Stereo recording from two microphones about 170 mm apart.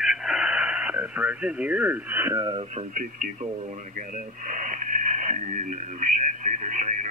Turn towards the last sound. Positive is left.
turn(degrees=-45)  # may be behind; listen again after turning